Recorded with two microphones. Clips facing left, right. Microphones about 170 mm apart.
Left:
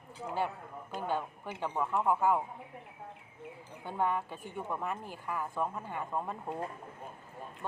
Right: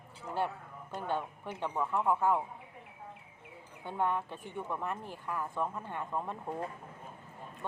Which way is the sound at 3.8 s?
5° left (ahead or behind).